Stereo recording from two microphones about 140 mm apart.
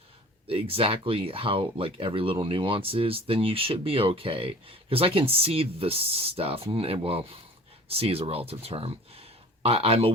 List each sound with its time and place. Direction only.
0.4 s speech: 40° right (ahead or behind)